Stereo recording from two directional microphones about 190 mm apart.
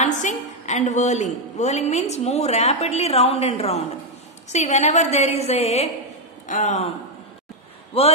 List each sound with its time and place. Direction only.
0.0 s a woman's voice: 40° left (ahead or behind)
7.9 s a woman's voice: 30° left (ahead or behind)